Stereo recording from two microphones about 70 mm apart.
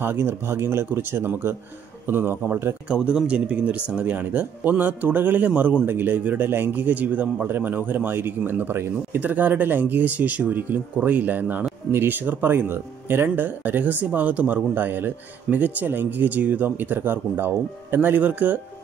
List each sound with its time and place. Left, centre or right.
0.0 s a man's voice: right
2.9 s a man's voice: centre